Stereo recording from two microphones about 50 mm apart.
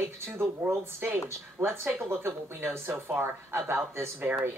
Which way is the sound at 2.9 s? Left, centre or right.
Right.